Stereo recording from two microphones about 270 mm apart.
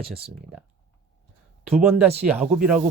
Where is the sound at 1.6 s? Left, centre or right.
Centre.